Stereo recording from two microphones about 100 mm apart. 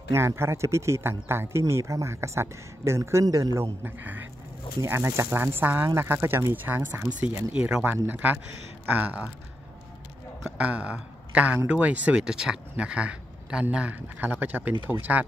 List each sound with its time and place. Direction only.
0.1 s speech: 25° right (ahead or behind)
3.8 s speech: 20° right (ahead or behind)
10.4 s speech: 10° right (ahead or behind)